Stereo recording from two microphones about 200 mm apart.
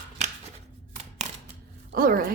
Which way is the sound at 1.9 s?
45° right (ahead or behind).